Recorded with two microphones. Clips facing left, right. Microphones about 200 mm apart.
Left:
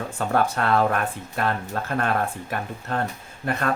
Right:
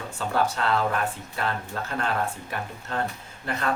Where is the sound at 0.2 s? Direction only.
55° left (ahead or behind).